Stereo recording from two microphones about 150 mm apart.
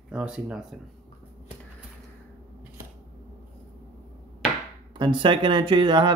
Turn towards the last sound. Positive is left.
turn(degrees=-30)  # may be behind; listen again after turning